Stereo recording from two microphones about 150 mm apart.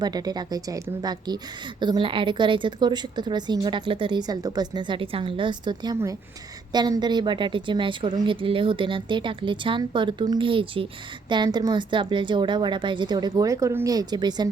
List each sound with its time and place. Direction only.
0.0 s a woman's voice: 25° right (ahead or behind)